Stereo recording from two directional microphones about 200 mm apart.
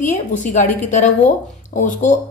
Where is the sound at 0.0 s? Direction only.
40° left (ahead or behind).